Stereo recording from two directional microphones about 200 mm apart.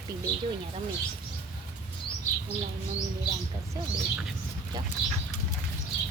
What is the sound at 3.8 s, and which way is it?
Speech, 20° right (ahead or behind).